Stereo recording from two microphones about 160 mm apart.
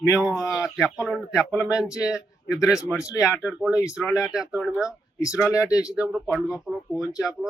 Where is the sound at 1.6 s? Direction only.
20° left (ahead or behind).